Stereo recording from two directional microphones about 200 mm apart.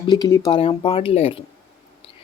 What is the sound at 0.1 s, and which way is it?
A woman's voice, 15° left (ahead or behind).